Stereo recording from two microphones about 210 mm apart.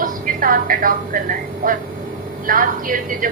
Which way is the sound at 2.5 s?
40° right (ahead or behind).